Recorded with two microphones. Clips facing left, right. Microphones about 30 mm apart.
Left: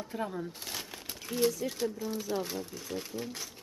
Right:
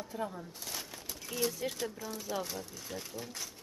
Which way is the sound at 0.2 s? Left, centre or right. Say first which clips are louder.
Left 3 dB; centre.